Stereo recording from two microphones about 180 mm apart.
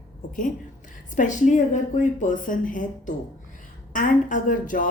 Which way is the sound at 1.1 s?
45° left (ahead or behind).